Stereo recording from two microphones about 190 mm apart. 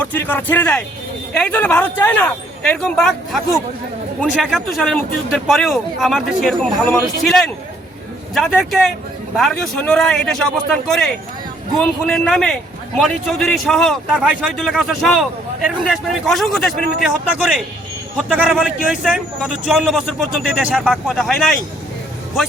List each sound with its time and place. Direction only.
0.0 s a man's voice: 10° left (ahead or behind)